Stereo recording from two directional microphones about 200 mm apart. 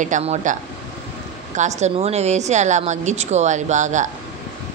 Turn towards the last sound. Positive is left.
turn(degrees=-35)  # may be behind; listen again after turning